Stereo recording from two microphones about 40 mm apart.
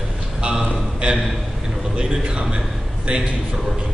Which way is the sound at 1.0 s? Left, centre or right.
Right.